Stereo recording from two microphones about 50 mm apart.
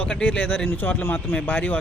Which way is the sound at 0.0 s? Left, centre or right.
Left.